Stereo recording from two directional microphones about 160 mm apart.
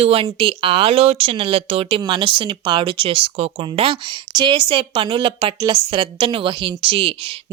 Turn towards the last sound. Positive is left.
turn(degrees=-35)  # may be behind; listen again after turning